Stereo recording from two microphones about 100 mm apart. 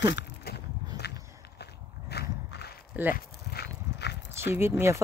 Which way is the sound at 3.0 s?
15° right (ahead or behind).